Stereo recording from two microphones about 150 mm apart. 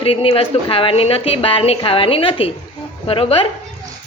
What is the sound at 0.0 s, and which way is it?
A woman's voice, 40° left (ahead or behind).